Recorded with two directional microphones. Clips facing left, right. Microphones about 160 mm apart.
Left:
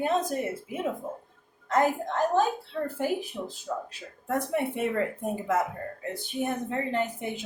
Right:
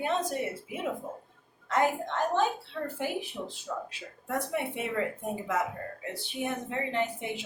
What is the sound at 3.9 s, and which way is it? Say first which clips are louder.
Speech: left 4 dB; 45° left (ahead or behind).